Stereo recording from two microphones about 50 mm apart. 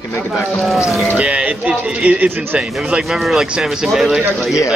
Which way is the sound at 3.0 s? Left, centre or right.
Centre.